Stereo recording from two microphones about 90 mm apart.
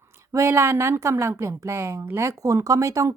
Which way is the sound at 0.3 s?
30° right (ahead or behind).